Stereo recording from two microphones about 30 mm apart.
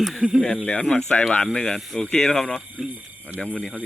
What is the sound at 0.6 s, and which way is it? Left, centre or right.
Speech, left.